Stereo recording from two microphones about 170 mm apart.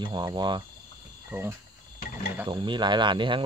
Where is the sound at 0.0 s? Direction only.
25° right (ahead or behind).